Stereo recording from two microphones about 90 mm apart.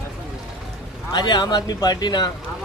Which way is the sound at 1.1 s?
55° left (ahead or behind).